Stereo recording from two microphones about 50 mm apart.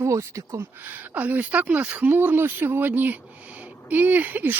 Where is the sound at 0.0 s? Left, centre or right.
Right.